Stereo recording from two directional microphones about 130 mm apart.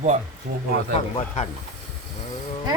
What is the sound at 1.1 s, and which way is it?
Speech, 55° left (ahead or behind).